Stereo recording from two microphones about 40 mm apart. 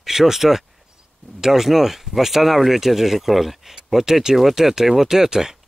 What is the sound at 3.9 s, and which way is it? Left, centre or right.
Speech, centre.